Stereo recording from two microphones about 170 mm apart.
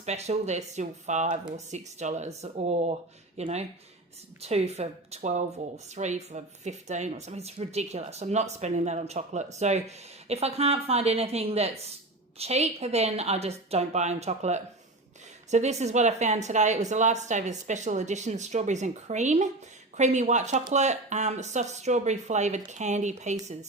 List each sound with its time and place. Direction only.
0.0 s speech: 40° right (ahead or behind)